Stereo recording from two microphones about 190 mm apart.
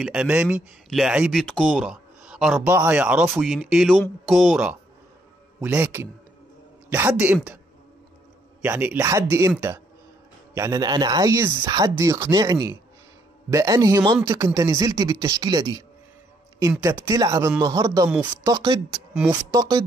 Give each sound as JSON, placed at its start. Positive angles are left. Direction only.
{"t": 0.0, "sound": "a man's voice", "side_deg": -5}
{"t": 8.6, "sound": "a man's voice", "side_deg": -10}
{"t": 10.5, "sound": "a man's voice", "side_deg": -15}